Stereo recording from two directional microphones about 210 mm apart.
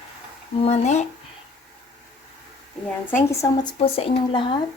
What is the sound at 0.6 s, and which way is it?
Speech, 30° left (ahead or behind).